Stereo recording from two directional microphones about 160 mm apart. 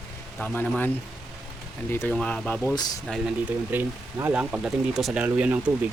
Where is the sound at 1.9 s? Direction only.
10° left (ahead or behind).